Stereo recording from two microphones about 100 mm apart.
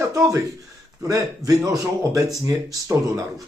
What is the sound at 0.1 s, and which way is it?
Speech, 30° right (ahead or behind).